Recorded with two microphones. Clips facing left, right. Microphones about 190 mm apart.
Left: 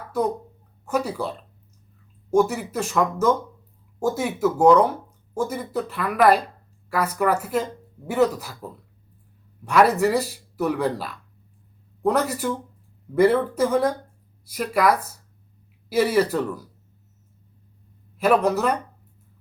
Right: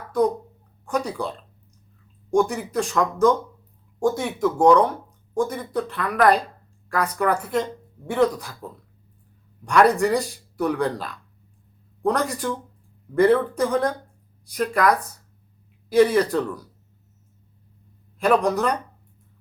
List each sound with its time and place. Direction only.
0.9 s speech: 5° left (ahead or behind)
2.3 s speech: 5° left (ahead or behind)
18.2 s speech: 5° left (ahead or behind)